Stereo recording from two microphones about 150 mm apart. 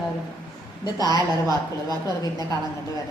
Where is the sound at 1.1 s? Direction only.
25° right (ahead or behind).